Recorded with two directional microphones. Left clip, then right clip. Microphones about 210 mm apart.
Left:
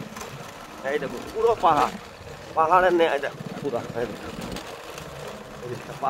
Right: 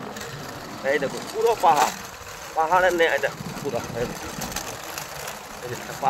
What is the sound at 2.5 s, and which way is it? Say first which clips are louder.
Speech: left 1 dB; 30° left (ahead or behind).